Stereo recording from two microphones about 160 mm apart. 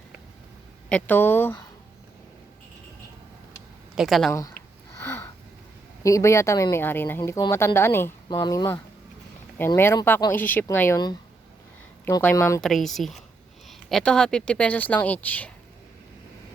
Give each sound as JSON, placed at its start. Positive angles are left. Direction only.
{"t": 0.9, "sound": "speech", "side_deg": 10}
{"t": 3.9, "sound": "speech", "side_deg": 0}
{"t": 4.3, "sound": "speech", "side_deg": 20}
{"t": 5.0, "sound": "a sound", "side_deg": 15}
{"t": 6.0, "sound": "speech", "side_deg": 20}
{"t": 10.3, "sound": "speech", "side_deg": 10}
{"t": 12.0, "sound": "speech", "side_deg": 15}
{"t": 12.6, "sound": "speech", "side_deg": 0}